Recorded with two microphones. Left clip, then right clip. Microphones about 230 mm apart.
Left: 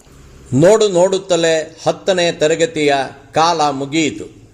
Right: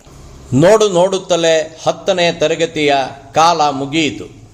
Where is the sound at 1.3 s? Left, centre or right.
Left.